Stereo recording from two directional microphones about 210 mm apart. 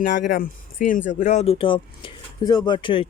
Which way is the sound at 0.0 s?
40° left (ahead or behind).